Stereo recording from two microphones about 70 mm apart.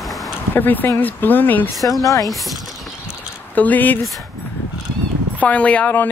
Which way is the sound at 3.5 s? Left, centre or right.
Left.